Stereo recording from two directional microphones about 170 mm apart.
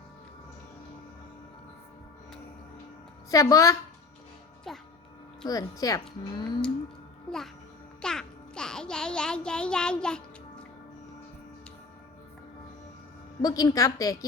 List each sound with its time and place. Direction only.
3.2 s speech: 20° left (ahead or behind)
5.5 s speech: 20° left (ahead or behind)
7.3 s music: centre (ahead or behind)
13.4 s speech: 20° left (ahead or behind)